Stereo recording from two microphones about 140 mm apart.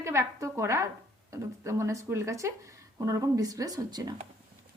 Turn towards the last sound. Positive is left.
turn(degrees=-30)  # may be behind; listen again after turning